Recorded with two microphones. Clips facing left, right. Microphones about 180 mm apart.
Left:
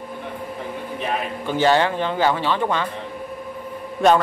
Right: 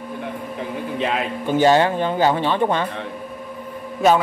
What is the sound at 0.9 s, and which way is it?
Speech, 90° right.